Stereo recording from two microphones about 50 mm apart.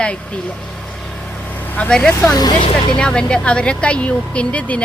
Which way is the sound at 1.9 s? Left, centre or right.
Centre.